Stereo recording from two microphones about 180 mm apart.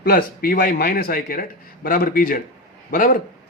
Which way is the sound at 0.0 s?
55° left (ahead or behind).